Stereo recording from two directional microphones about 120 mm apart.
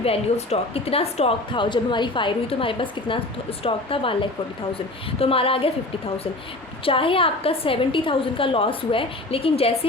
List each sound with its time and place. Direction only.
0.0 s a woman's voice: 55° left (ahead or behind)
1.5 s a woman's voice: 40° left (ahead or behind)
6.8 s a woman's voice: 50° left (ahead or behind)